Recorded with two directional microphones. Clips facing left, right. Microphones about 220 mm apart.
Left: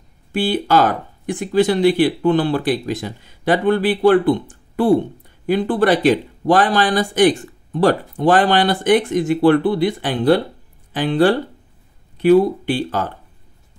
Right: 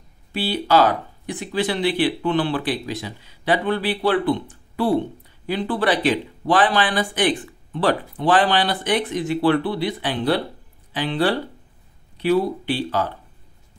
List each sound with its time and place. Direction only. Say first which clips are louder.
0.3 s speech: left 3 dB; 50° left (ahead or behind)